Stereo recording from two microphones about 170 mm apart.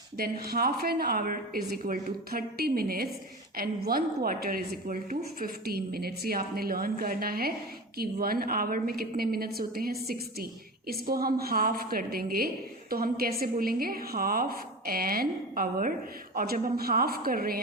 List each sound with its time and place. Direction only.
0.2 s a woman's voice: 60° right (ahead or behind)